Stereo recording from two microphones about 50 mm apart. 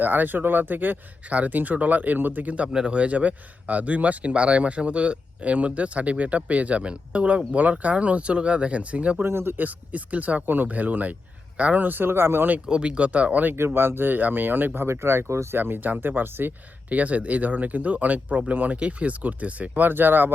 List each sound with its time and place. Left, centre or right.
0.0 s speech: right
2.7 s speech: right
9.2 s speech: right
9.6 s speech: right
11.8 s speech: right
12.6 s speech: centre
13.5 s speech: right
14.8 s speech: right
16.9 s speech: right